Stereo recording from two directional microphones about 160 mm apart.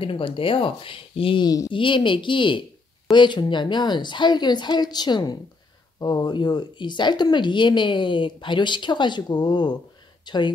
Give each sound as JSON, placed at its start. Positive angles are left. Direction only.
{"t": 0.0, "sound": "speech", "side_deg": 35}